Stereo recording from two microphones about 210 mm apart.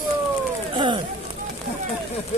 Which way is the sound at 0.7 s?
25° right (ahead or behind).